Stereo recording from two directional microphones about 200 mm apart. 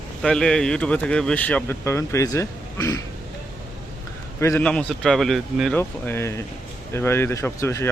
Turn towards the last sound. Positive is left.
turn(degrees=15)  # may be behind; listen again after turning